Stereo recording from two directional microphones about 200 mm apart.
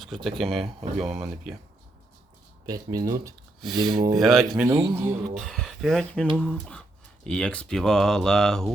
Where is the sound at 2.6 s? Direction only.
20° right (ahead or behind).